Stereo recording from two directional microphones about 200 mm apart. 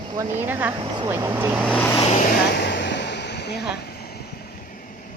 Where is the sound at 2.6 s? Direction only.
60° left (ahead or behind).